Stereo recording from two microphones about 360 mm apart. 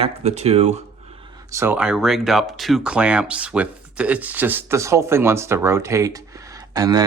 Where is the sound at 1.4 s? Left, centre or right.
Centre.